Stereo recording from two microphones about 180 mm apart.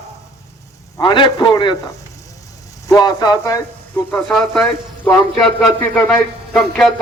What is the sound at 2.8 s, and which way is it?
Speech, 20° left (ahead or behind).